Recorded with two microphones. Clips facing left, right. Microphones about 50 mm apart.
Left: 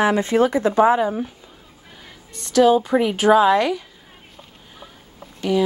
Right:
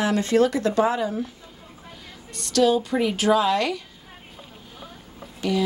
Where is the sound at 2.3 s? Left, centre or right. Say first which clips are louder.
Left 5 dB; left.